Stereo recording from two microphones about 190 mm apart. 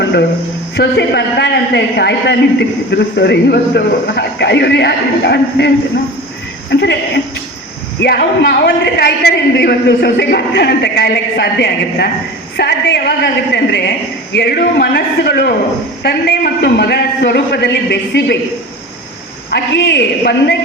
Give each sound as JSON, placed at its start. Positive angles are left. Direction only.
{"t": 0.0, "sound": "a sound", "side_deg": 60}
{"t": 0.8, "sound": "a man's voice", "side_deg": 60}
{"t": 8.0, "sound": "a man's voice", "side_deg": 60}
{"t": 19.5, "sound": "a man's voice", "side_deg": 65}